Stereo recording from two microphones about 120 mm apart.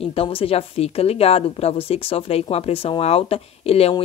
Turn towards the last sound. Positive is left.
turn(degrees=55)  # may be behind; listen again after turning